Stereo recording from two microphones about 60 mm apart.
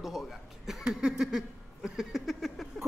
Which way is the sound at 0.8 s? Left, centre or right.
Centre.